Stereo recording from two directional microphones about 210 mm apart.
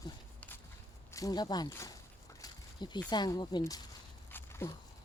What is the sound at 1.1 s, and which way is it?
Speech, 15° left (ahead or behind).